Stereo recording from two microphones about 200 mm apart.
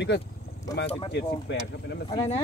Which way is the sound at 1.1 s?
60° left (ahead or behind).